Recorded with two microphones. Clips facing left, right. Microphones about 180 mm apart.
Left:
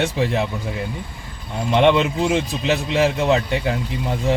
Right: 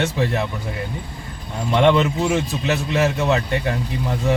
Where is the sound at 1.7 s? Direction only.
20° left (ahead or behind).